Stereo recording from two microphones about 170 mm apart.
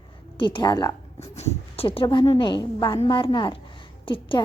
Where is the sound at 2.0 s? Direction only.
30° left (ahead or behind).